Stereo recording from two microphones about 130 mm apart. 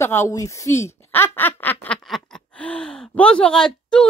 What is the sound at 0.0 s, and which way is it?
A woman's voice, 20° left (ahead or behind).